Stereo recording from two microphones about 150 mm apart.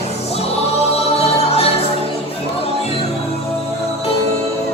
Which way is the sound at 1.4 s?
40° left (ahead or behind).